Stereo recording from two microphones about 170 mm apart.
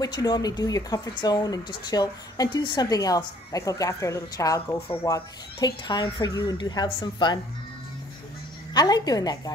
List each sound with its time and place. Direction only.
0.0 s speech: 25° left (ahead or behind)
8.7 s speech: 25° left (ahead or behind)